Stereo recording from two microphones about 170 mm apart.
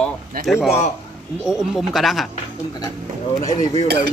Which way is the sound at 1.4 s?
5° right (ahead or behind).